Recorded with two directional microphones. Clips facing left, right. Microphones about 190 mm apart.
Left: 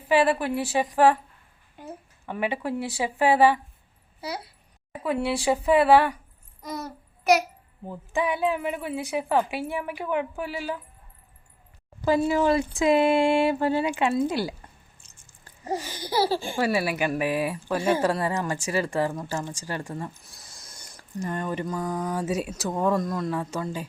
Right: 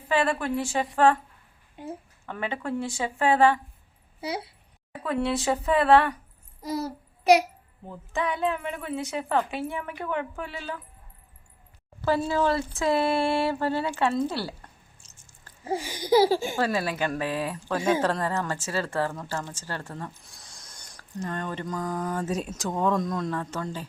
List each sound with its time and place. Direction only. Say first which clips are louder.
0.1 s speech: left 3 dB; 10° left (ahead or behind)
2.2 s speech: left 4 dB; 15° left (ahead or behind)
5.0 s speech: left 1 dB; 10° left (ahead or behind)
6.6 s child singing: right 4 dB; 30° right (ahead or behind)
7.9 s speech: left 3 dB; 10° left (ahead or behind)
12.0 s speech: left 3 dB; 15° left (ahead or behind)
15.6 s speech: even; 10° right (ahead or behind)
16.6 s speech: left 2 dB; 10° left (ahead or behind)